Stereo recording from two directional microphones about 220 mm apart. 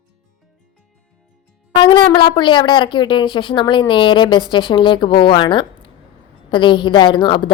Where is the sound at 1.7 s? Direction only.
20° left (ahead or behind).